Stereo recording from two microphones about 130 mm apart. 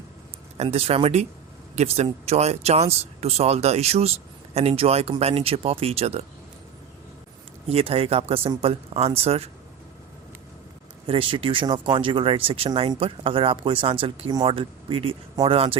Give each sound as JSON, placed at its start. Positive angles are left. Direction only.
{"t": 0.5, "sound": "speech", "side_deg": -55}
{"t": 7.7, "sound": "speech", "side_deg": -50}
{"t": 11.0, "sound": "speech", "side_deg": -40}